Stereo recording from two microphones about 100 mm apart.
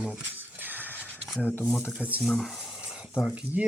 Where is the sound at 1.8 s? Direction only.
15° right (ahead or behind).